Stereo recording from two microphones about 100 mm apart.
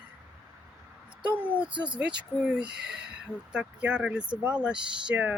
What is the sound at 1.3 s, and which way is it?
Speech, 15° right (ahead or behind).